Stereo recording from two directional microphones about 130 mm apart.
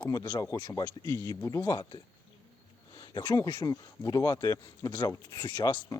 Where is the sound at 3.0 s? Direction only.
30° left (ahead or behind).